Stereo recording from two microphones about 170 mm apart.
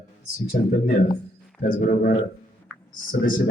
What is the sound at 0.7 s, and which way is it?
A man's voice, 55° left (ahead or behind).